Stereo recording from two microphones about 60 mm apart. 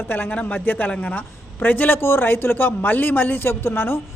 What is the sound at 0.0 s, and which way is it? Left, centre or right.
A woman's voice, left.